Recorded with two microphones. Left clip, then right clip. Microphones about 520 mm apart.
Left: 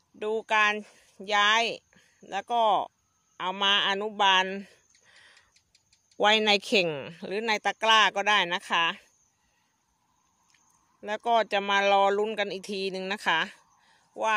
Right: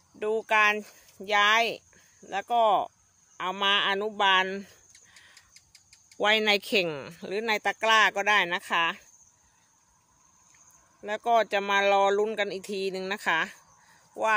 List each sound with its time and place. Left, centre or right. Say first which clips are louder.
0.2 s speech: right 1 dB; left
5.5 s a sound: right 8 dB; left
6.1 s speech: left 1 dB; left
11.0 s speech: right 1 dB; left